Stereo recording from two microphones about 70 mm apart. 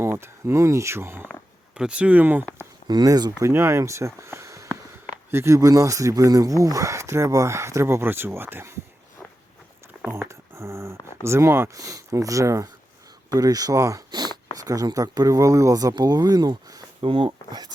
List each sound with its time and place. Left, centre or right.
0.0 s speech: right
1.7 s speech: centre
2.8 s speech: right
3.4 s speech: right
5.5 s speech: right
10.1 s a sound: right
11.2 s speech: right
11.7 s speech: right
13.3 s speech: right
14.1 s a sound: right
14.5 s speech: right